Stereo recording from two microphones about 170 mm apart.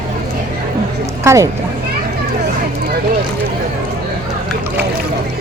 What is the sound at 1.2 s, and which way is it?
Speech, 15° right (ahead or behind).